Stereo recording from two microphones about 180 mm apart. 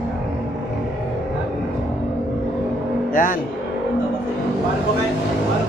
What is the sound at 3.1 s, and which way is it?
Speech, 50° left (ahead or behind).